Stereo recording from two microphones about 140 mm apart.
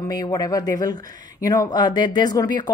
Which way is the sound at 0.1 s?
25° left (ahead or behind).